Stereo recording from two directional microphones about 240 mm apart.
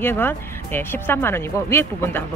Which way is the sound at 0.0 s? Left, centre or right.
Centre.